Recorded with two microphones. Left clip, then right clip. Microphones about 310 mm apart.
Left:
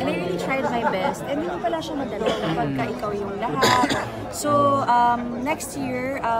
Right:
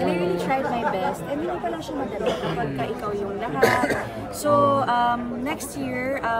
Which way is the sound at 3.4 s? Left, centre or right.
Centre.